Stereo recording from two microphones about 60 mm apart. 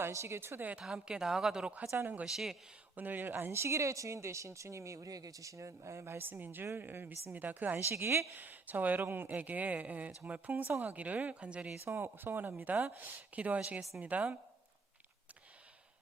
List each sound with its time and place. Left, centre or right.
0.1 s speech: right
0.8 s speech: centre
2.9 s speech: right
7.8 s speech: right
8.4 s speech: right
11.9 s speech: right
13.3 s speech: right